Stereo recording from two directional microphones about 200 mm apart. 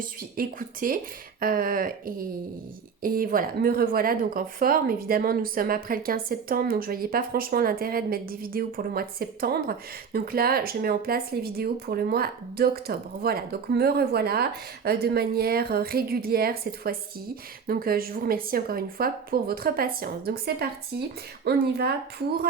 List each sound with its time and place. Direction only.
0.0 s speech: 45° right (ahead or behind)